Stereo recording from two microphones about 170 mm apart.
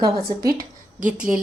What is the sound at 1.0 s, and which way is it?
Speech, 5° right (ahead or behind).